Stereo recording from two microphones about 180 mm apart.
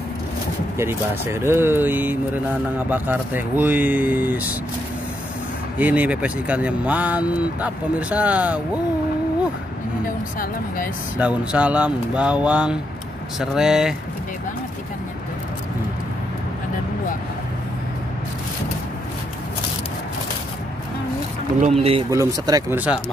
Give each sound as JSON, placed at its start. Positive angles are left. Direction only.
{"t": 0.7, "sound": "speech", "side_deg": -15}
{"t": 5.8, "sound": "speech", "side_deg": -10}
{"t": 10.0, "sound": "speech", "side_deg": 50}
{"t": 11.1, "sound": "speech", "side_deg": -10}
{"t": 21.5, "sound": "speech", "side_deg": -40}
{"t": 22.1, "sound": "speech", "side_deg": -20}